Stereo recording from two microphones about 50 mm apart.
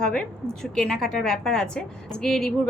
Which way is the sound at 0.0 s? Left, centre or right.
Centre.